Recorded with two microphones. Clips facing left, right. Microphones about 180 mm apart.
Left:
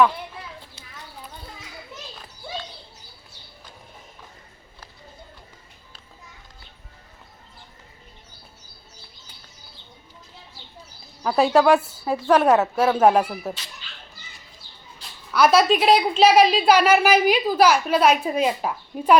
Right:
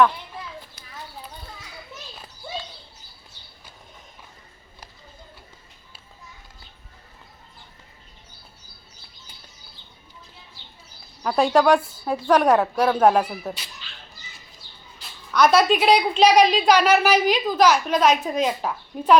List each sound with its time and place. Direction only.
0.8 s clip-clop: 25° left (ahead or behind)
11.2 s a woman's voice: 5° left (ahead or behind)
15.3 s a woman's voice: 5° left (ahead or behind)